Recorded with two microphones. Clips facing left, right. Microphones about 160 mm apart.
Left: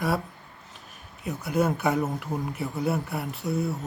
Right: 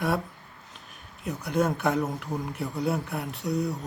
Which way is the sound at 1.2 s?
Centre (ahead or behind).